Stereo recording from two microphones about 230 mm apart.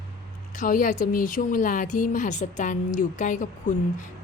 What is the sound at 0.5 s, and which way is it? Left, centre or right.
Speech, left.